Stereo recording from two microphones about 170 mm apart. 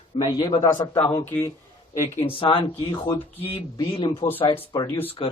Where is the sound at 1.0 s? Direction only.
10° left (ahead or behind).